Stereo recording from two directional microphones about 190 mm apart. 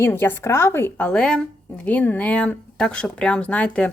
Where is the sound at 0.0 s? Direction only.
10° left (ahead or behind).